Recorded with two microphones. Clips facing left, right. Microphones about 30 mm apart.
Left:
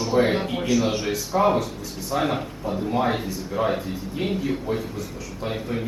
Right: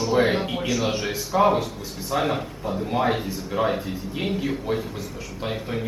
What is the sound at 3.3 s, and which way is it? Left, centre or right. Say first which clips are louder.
Speech: right 1 dB; centre.